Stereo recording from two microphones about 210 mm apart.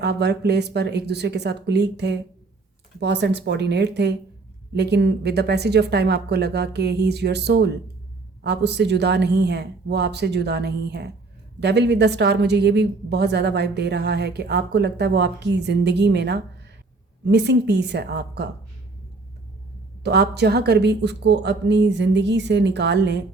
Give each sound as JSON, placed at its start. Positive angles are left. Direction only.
{"t": 0.0, "sound": "a woman's voice", "side_deg": -55}
{"t": 20.0, "sound": "a woman's voice", "side_deg": -55}